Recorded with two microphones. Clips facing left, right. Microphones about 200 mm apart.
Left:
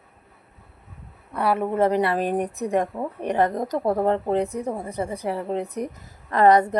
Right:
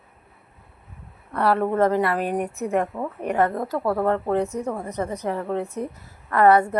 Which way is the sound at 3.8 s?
20° left (ahead or behind).